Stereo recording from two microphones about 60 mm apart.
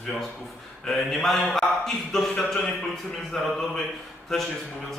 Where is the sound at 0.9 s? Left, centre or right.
Centre.